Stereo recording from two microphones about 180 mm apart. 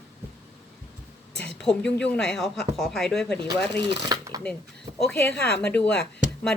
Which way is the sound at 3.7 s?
30° right (ahead or behind).